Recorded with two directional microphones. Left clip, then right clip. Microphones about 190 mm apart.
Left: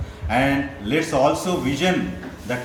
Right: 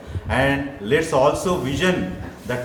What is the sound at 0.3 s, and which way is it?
A man's voice, 25° right (ahead or behind).